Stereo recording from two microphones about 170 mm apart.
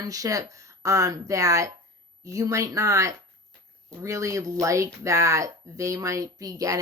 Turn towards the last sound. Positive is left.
turn(degrees=-20)  # may be behind; listen again after turning